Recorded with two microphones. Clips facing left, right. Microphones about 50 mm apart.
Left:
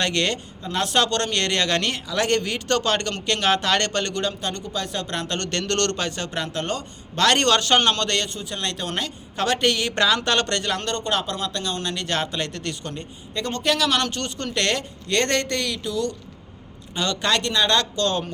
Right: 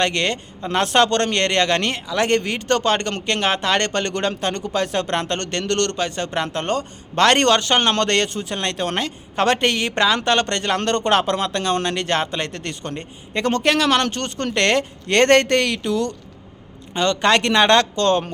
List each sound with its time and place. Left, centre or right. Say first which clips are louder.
0.0 s a man's voice: right 3 dB; right
0.7 s a man's voice: right 5 dB; right
4.1 s a man's voice: right 4 dB; right
5.5 s a man's voice: right 2 dB; centre; by 7.5 s right
7.5 s a man's voice: right 1 dB; right
7.9 s a man's voice: right 6 dB; right
10.8 s speech: right 7 dB; right
12.1 s a man's voice: right 3 dB; right
13.3 s a man's voice: right 5 dB; right
17.4 s speech: right 7 dB; right
17.9 s a man's voice: right 5 dB; right